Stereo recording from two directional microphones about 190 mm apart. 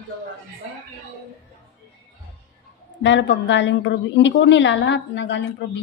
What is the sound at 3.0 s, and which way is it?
A woman's voice, 70° left (ahead or behind).